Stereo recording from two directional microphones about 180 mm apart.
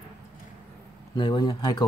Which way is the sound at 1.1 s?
25° left (ahead or behind).